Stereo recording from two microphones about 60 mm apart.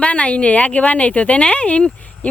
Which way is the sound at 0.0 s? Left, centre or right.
Left.